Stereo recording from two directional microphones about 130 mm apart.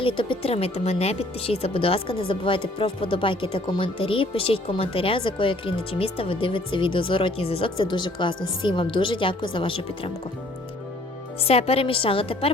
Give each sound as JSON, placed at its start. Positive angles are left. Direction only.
{"t": 0.0, "sound": "speech", "side_deg": 40}
{"t": 11.3, "sound": "speech", "side_deg": 50}